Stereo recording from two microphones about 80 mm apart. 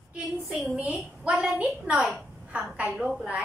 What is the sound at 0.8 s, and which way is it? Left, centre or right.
A woman's voice, centre.